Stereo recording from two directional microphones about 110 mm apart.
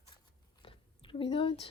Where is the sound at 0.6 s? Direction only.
50° left (ahead or behind).